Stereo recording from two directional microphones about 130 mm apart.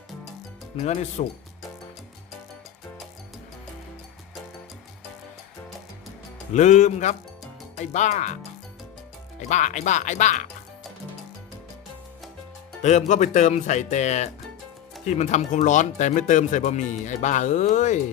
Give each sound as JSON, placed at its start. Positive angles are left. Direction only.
{"t": 0.7, "sound": "speech", "side_deg": 50}
{"t": 6.5, "sound": "speech", "side_deg": 65}
{"t": 9.5, "sound": "speech", "side_deg": 65}
{"t": 12.8, "sound": "speech", "side_deg": 60}